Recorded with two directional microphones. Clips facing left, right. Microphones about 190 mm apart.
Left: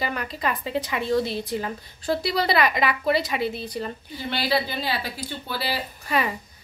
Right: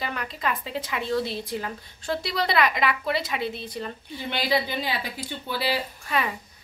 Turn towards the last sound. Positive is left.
turn(degrees=5)  # may be behind; listen again after turning